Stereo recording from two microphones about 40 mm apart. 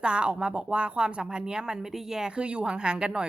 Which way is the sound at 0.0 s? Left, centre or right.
Right.